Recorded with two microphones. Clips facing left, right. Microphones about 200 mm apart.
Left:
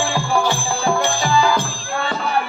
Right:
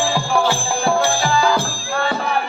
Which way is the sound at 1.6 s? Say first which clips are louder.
Right 1 dB; 45° right (ahead or behind).